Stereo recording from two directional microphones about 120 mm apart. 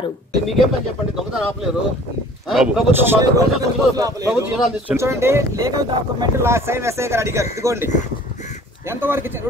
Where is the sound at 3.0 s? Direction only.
20° right (ahead or behind).